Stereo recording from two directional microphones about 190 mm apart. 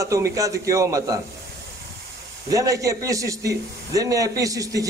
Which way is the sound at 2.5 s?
15° right (ahead or behind).